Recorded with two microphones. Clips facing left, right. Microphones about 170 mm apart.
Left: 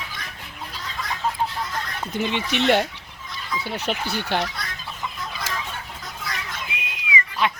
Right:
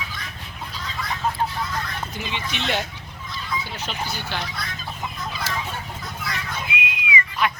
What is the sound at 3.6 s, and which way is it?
Speech, 65° left (ahead or behind).